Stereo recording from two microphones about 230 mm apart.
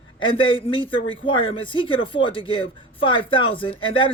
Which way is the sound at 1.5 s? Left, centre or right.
Left.